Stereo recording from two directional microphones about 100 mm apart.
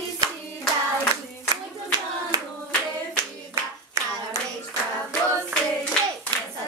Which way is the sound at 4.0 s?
30° right (ahead or behind).